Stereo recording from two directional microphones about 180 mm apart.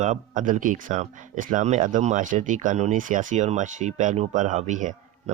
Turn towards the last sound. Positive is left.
turn(degrees=-45)  # may be behind; listen again after turning